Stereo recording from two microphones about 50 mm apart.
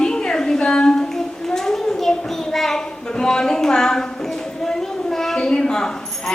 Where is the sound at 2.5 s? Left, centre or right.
Centre.